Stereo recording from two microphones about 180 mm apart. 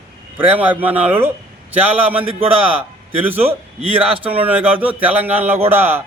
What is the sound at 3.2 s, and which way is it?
A man's voice, 10° right (ahead or behind).